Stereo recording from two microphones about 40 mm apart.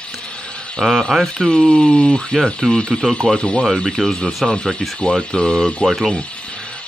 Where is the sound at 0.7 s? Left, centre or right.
Centre.